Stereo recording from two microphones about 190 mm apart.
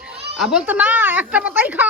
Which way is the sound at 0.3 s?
Centre (ahead or behind).